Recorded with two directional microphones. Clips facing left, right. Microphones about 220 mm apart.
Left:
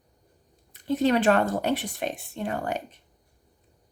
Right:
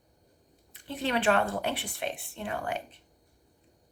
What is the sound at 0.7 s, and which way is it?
Speech, 40° left (ahead or behind).